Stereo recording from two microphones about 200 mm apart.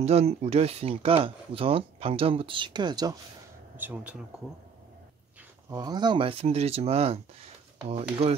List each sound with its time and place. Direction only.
0.0 s speech: 30° right (ahead or behind)
3.7 s speech: 10° right (ahead or behind)
5.7 s speech: 20° right (ahead or behind)